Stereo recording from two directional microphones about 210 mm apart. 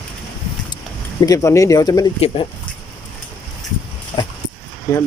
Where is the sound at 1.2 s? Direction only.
15° left (ahead or behind).